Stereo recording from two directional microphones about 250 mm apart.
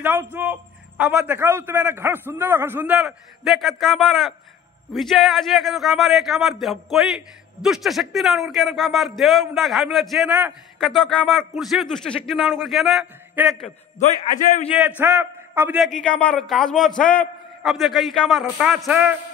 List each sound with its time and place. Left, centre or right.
0.0 s a man's voice: centre
13.9 s a man's voice: left
14.7 s a man's voice: centre